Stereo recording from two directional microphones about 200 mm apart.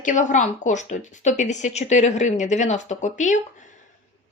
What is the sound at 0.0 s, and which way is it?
A woman's voice, 40° left (ahead or behind).